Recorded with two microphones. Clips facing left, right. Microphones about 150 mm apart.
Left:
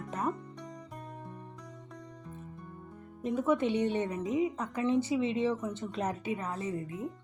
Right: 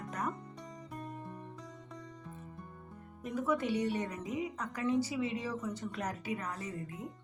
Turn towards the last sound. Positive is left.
turn(degrees=25)  # may be behind; listen again after turning